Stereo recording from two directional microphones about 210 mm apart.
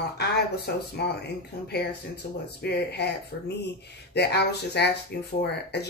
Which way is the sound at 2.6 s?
50° left (ahead or behind).